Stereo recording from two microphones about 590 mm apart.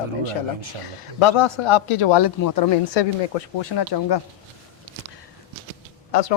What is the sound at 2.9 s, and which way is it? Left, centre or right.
Speech, left.